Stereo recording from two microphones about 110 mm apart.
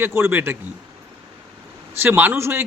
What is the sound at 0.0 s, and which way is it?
Speech, 20° right (ahead or behind).